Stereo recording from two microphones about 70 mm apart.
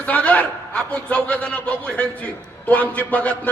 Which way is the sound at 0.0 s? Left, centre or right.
Left.